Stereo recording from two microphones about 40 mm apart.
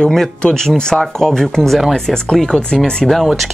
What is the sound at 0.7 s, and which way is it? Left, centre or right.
Speech, left.